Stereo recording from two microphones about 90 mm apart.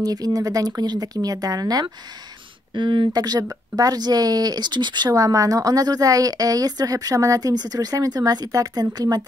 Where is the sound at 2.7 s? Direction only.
60° right (ahead or behind).